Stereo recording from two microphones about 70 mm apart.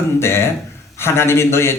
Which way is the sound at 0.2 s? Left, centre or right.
Left.